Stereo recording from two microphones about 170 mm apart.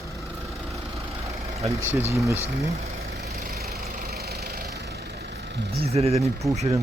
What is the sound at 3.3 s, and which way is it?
Vehicle, 45° right (ahead or behind).